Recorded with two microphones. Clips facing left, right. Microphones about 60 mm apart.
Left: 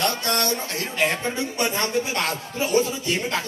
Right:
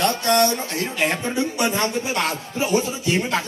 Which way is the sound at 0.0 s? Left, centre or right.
Right.